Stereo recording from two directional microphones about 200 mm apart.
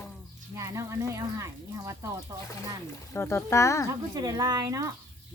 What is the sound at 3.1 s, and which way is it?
Speech, 10° left (ahead or behind).